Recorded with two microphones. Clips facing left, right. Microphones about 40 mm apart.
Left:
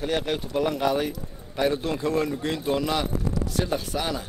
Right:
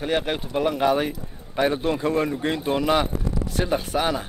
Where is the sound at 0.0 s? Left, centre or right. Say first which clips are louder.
Right 2 dB; right.